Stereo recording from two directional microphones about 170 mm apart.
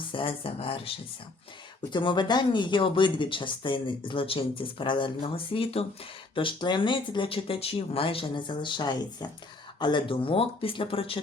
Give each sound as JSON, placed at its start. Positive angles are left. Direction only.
{"t": 0.1, "sound": "speech", "side_deg": 30}